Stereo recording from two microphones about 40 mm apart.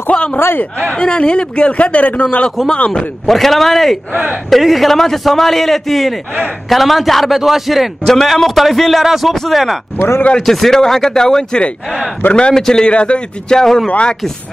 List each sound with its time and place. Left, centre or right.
0.1 s speech: left
2.6 s a man's voice: centre
4.1 s speech: right
4.5 s a man's voice: centre
8.0 s a man's voice: centre
9.3 s speech: centre
9.9 s speech: left
10.4 s speech: centre
12.2 s a man's voice: left
12.5 s speech: centre
12.8 s speech: left
13.6 s speech: centre
13.8 s speech: left